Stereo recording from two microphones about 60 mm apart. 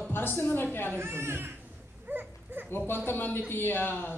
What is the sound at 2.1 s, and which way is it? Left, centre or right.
Dog, right.